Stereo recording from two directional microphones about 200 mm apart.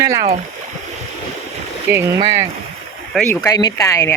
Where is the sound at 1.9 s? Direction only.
10° right (ahead or behind).